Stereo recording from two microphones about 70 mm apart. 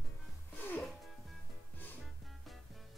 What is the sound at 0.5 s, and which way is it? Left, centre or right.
Music, left.